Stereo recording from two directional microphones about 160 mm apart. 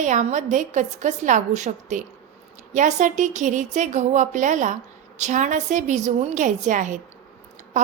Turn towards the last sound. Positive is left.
turn(degrees=-50)  # may be behind; listen again after turning